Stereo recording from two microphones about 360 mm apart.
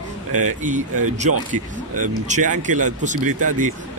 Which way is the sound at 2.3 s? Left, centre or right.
Right.